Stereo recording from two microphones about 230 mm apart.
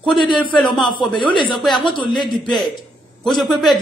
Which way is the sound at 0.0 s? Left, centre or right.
Left.